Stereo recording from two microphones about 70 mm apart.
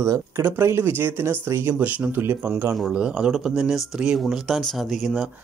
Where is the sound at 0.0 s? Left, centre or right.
Right.